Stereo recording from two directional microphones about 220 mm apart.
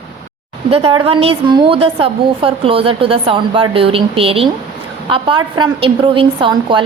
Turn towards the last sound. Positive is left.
turn(degrees=-20)  # may be behind; listen again after turning